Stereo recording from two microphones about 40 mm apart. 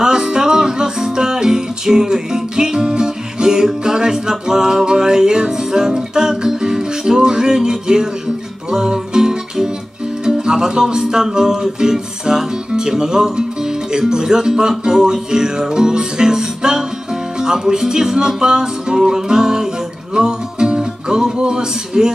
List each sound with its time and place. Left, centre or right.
0.0 s music: centre